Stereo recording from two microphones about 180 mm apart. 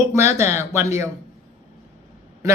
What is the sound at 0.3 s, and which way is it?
Speech, 15° right (ahead or behind).